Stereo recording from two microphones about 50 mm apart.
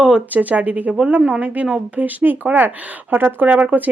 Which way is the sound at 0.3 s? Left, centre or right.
Right.